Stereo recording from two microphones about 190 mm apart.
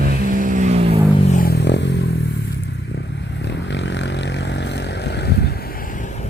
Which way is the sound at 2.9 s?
65° left (ahead or behind).